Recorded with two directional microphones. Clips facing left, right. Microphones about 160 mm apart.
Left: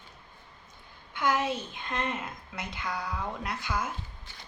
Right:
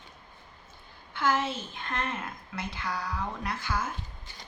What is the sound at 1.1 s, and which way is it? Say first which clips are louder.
Speech: even; 15° left (ahead or behind).